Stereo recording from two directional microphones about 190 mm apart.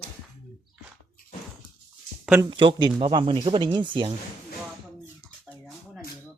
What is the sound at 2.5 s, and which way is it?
Speech, 25° right (ahead or behind).